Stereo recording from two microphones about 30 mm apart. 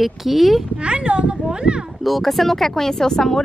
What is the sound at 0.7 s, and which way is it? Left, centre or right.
Speech, right.